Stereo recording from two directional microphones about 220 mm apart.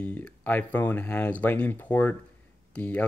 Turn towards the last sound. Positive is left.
turn(degrees=5)  # may be behind; listen again after turning